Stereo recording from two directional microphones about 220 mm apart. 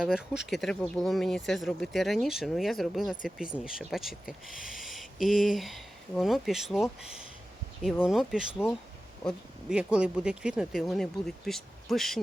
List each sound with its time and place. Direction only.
0.0 s speech: 5° right (ahead or behind)